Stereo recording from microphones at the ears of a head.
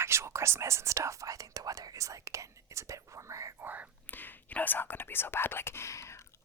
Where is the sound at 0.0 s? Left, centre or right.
Right.